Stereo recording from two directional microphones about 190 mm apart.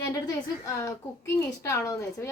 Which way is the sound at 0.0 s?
15° left (ahead or behind).